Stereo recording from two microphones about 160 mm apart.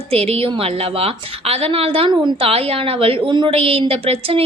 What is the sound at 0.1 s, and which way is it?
A woman's voice, 40° right (ahead or behind).